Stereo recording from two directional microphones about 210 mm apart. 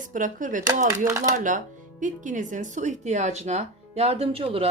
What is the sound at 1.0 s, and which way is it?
Speech, 15° right (ahead or behind).